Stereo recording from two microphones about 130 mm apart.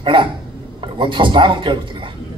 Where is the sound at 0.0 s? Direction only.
40° right (ahead or behind).